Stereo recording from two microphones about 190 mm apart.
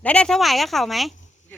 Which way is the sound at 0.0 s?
5° left (ahead or behind).